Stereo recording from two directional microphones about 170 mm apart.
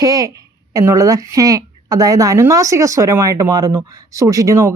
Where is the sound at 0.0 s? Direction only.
20° right (ahead or behind).